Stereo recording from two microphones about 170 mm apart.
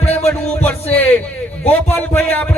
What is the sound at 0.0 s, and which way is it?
Music, 40° left (ahead or behind).